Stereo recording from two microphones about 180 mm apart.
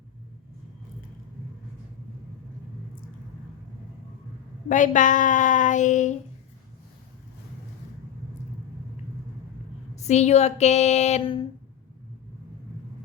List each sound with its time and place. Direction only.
4.7 s a woman's voice: 45° left (ahead or behind)
9.9 s speech: 40° left (ahead or behind)